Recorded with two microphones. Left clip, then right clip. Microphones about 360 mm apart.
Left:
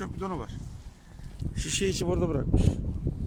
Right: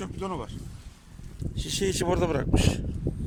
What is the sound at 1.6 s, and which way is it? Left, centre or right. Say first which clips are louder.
Speech: right 1 dB; centre.